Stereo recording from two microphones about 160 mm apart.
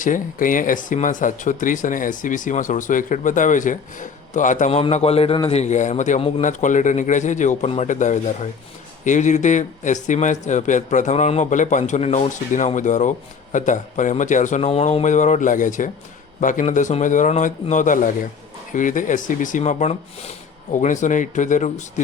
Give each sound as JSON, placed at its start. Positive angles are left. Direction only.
{"t": 0.0, "sound": "speech", "side_deg": 55}